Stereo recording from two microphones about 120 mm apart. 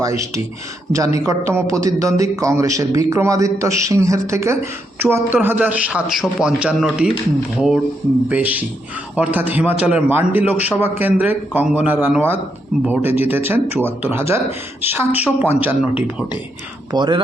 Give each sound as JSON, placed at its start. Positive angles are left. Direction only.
{"t": 0.9, "sound": "a man's voice", "side_deg": -25}
{"t": 8.3, "sound": "a man's voice", "side_deg": -15}
{"t": 16.9, "sound": "speech", "side_deg": -40}